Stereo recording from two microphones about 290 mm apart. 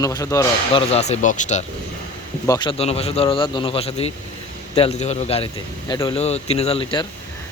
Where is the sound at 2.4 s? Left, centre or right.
Centre.